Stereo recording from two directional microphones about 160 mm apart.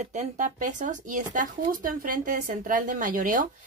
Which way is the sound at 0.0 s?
50° right (ahead or behind).